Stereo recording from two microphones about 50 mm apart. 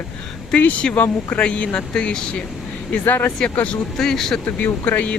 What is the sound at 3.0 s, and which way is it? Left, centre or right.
Speech, left.